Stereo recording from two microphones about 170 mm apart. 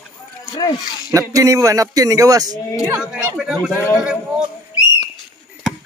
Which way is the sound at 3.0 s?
10° right (ahead or behind).